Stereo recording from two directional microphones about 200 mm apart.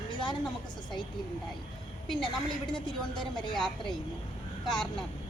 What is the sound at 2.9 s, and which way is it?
Speech, 25° left (ahead or behind).